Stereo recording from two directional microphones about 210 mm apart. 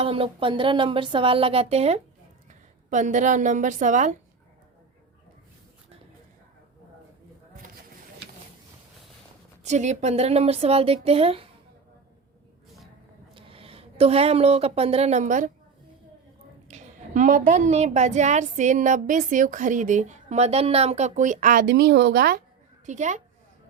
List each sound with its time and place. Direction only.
0.0 s a woman's voice: 25° right (ahead or behind)
9.6 s speech: 35° right (ahead or behind)
13.3 s a woman's voice: 25° right (ahead or behind)
16.6 s a woman's voice: 35° right (ahead or behind)
22.9 s a woman's voice: 35° right (ahead or behind)